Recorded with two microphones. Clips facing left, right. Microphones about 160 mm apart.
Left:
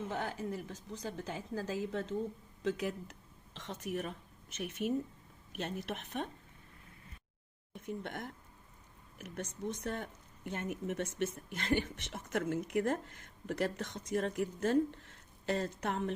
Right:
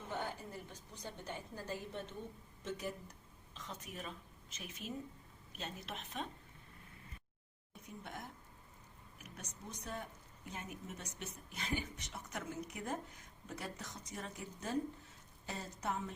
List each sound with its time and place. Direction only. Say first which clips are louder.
0.1 s speech: left 5 dB; 90° left
3.5 s a woman's voice: left 10 dB; 75° left (ahead or behind)
7.7 s speech: left 9 dB; 80° left
9.3 s speech: left 12 dB; 90° left; by 13.0 s 70° left (ahead or behind)
13.5 s speech: left 11 dB; 90° left
14.1 s speech: left 15 dB; 75° left (ahead or behind)